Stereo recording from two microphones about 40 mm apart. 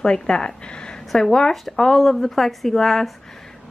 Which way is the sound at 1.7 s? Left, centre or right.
Centre.